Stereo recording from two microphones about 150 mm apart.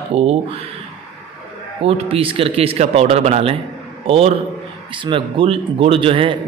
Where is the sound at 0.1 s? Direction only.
40° right (ahead or behind).